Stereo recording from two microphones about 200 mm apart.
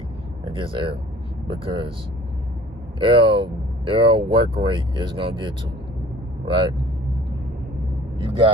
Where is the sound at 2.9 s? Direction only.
25° right (ahead or behind).